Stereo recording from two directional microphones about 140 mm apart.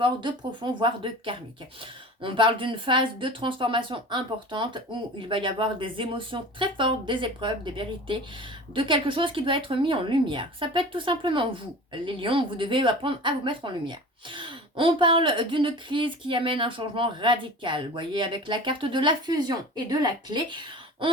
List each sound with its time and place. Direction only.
0.0 s speech: 35° right (ahead or behind)